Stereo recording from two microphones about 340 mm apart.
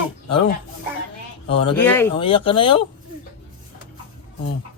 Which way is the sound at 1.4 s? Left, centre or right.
Centre.